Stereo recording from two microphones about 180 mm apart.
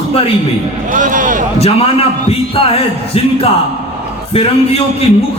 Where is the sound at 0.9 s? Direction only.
45° right (ahead or behind).